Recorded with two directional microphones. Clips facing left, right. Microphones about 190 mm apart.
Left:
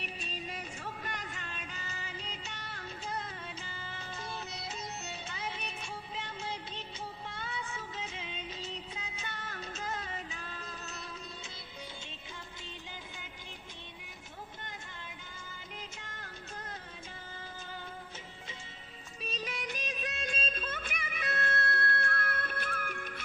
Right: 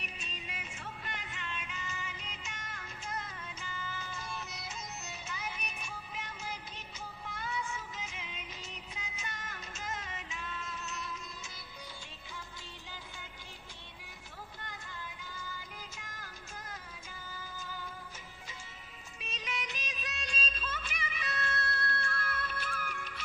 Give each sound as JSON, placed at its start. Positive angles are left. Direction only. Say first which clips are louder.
{"t": 0.0, "sound": "music", "louder": "left 5 dB", "side_deg": 35}
{"t": 7.3, "sound": "music of bollywood", "louder": "right 2 dB", "side_deg": 30}
{"t": 15.8, "sound": "music", "louder": "left 2 dB", "side_deg": 30}
{"t": 17.3, "sound": "music", "louder": "right 1 dB", "side_deg": 25}
{"t": 19.2, "sound": "music", "louder": "left 3 dB", "side_deg": 35}